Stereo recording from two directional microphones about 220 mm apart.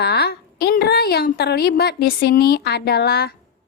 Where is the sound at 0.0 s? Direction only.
45° left (ahead or behind).